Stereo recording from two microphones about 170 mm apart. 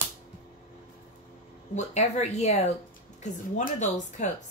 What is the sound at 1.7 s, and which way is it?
Speech, 45° left (ahead or behind).